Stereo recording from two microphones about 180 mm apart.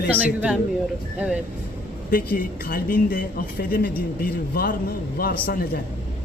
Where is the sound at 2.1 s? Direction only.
55° left (ahead or behind).